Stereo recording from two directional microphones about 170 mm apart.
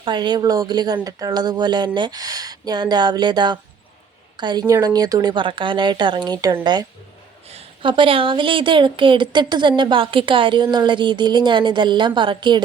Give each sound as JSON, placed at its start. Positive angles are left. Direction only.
{"t": 0.0, "sound": "a woman's voice", "side_deg": -25}
{"t": 7.5, "sound": "a woman's voice", "side_deg": -35}